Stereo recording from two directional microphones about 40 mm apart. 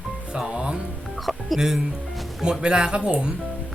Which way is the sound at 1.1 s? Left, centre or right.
Centre.